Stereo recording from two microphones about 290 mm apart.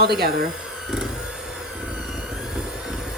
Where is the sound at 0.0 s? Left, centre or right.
Right.